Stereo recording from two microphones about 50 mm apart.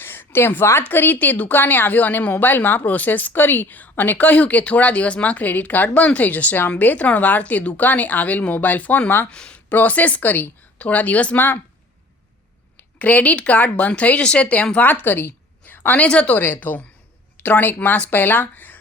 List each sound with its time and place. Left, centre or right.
0.0 s a sound: left
0.9 s a woman's voice: left
9.3 s speech: left
9.6 s a woman's voice: left
11.3 s speech: left
13.0 s speech: left
14.8 s a woman's voice: left
16.0 s speech: left
16.4 s a woman's voice: left